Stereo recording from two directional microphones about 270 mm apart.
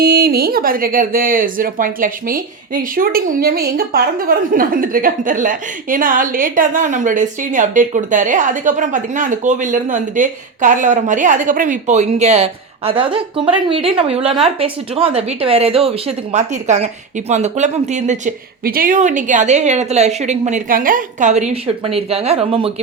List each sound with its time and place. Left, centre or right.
0.0 s speech: right; by 22.7 s centre